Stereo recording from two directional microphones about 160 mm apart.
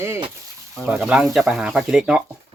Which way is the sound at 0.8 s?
5° right (ahead or behind).